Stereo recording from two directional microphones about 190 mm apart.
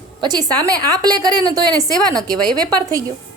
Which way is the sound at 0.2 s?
20° right (ahead or behind).